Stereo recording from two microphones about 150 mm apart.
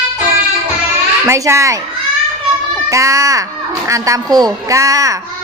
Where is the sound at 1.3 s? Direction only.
20° right (ahead or behind).